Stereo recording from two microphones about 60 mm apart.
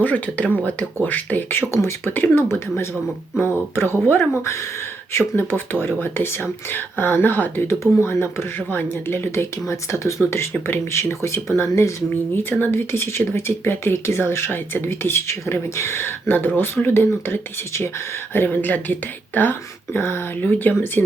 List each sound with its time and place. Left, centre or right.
0.0 s speech: left
1.5 s speech: left
2.3 s speech: left
3.3 s speech: left
3.8 s speech: right
4.1 s speech: left
7.7 s speech: left
8.5 s speech: left
10.2 s speech: left
12.4 s speech: left
18.4 s speech: left